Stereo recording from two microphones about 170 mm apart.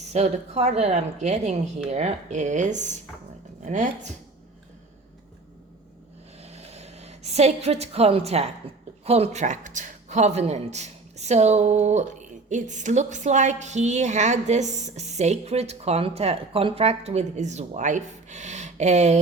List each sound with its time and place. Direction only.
0.1 s a woman's voice: 40° right (ahead or behind)
6.4 s a sound: 40° right (ahead or behind)
9.0 s speech: 40° right (ahead or behind)